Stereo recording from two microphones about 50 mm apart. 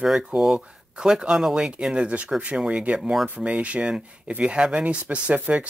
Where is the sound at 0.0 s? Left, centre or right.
Centre; by 2.8 s right.